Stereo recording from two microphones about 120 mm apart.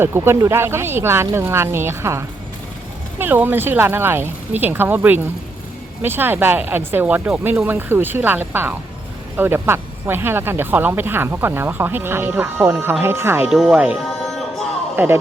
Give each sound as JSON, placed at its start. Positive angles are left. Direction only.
{"t": 0.0, "sound": "speech", "side_deg": -20}
{"t": 6.0, "sound": "speech", "side_deg": -15}
{"t": 13.5, "sound": "speech", "side_deg": -5}
{"t": 14.9, "sound": "speech", "side_deg": -20}